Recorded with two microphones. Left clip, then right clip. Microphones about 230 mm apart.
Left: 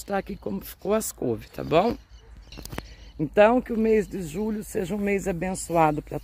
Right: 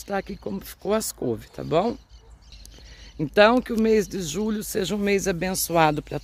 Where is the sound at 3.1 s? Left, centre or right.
Centre.